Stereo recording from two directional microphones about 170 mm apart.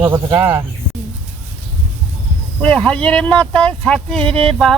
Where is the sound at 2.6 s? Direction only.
5° left (ahead or behind).